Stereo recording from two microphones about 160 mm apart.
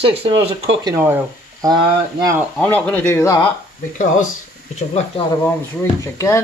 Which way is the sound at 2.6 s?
10° left (ahead or behind).